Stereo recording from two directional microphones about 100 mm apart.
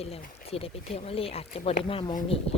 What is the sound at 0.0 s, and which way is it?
Speech, 90° left.